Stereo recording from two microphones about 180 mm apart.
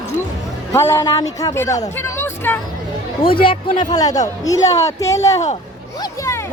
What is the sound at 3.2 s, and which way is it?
Speech, 30° left (ahead or behind).